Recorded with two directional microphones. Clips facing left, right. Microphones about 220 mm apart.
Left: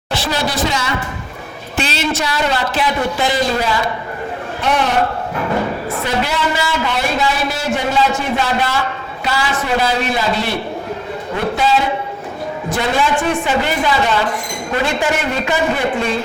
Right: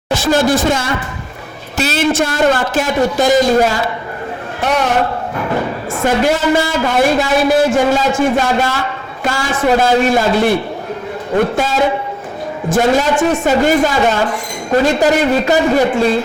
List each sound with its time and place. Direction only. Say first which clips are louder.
0.1 s speech: right 7 dB; 45° right (ahead or behind)
5.9 s a man's voice: right 6 dB; 45° right (ahead or behind)
11.5 s a man's voice: right 2 dB; 45° right (ahead or behind)